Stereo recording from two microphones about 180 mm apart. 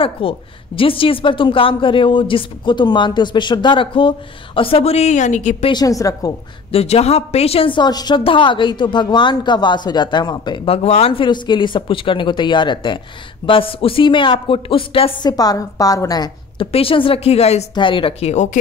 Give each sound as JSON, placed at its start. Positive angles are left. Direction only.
{"t": 0.0, "sound": "a woman's voice", "side_deg": 30}
{"t": 5.7, "sound": "a woman's voice", "side_deg": 20}
{"t": 6.7, "sound": "a woman's voice", "side_deg": 35}